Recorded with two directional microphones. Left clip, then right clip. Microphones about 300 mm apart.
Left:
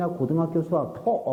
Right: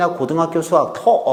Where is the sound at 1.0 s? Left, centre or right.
Right.